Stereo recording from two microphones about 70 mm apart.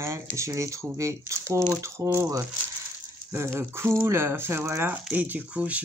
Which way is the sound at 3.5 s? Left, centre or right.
Right.